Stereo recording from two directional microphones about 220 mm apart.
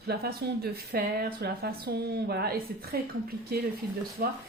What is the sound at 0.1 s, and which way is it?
Speech, 45° right (ahead or behind).